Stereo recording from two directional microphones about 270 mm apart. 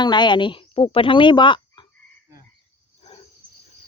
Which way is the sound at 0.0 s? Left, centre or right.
Centre.